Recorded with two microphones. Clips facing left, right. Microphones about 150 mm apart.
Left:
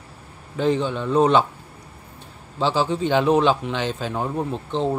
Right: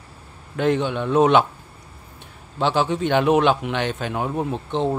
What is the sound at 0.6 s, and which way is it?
Speech, 65° right (ahead or behind).